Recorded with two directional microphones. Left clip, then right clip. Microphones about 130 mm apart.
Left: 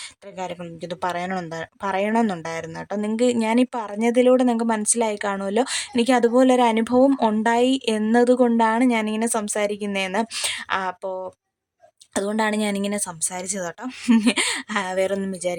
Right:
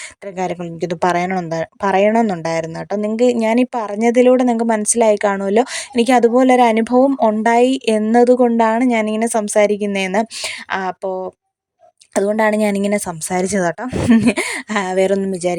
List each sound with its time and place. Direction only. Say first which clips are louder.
0.3 s a woman's voice: right 9 dB; 35° right (ahead or behind)
7.1 s speech: right 6 dB; 20° right (ahead or behind)
7.4 s a woman's voice: right 6 dB; 30° right (ahead or behind)
14.3 s a woman's voice: right 4 dB; 25° right (ahead or behind)